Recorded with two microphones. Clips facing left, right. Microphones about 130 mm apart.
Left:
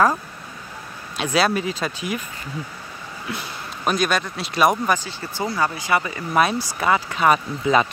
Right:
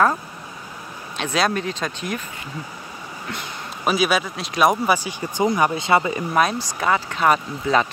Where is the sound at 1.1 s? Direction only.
5° left (ahead or behind).